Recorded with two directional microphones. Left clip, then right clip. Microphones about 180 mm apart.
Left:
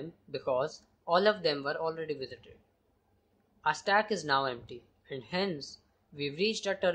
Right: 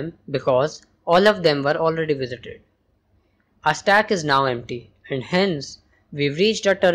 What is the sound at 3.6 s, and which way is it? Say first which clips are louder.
A woman's voice: right 11 dB; 15° right (ahead or behind).